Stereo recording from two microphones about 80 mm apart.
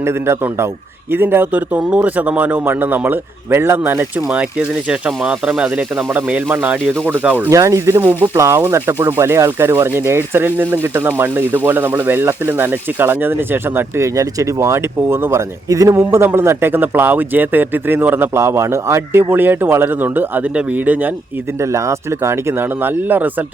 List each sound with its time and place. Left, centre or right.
0.0 s speech: right
4.3 s speech: centre
7.5 s speech: right
14.2 s speech: right
15.7 s speech: right
18.3 s speech: right; by 21.1 s centre
21.6 s speech: right